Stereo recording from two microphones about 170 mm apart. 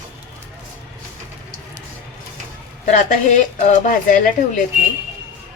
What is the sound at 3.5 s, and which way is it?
Speech, 45° left (ahead or behind).